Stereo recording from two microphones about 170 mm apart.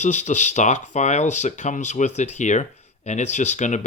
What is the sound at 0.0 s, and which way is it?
Speech, 45° left (ahead or behind).